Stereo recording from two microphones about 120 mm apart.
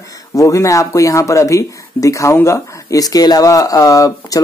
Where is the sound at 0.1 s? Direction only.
25° left (ahead or behind).